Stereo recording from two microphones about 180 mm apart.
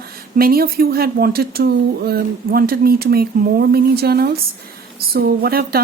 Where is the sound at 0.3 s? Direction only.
55° right (ahead or behind).